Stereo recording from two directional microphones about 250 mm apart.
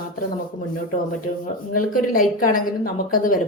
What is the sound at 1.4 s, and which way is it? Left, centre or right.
A woman's voice, left.